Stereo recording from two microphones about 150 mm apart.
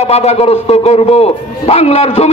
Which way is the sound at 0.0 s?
45° left (ahead or behind).